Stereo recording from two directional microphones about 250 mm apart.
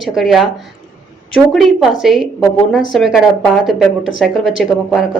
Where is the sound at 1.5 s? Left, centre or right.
Centre.